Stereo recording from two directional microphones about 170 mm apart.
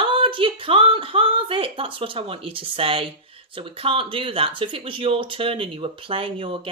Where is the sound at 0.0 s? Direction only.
30° right (ahead or behind).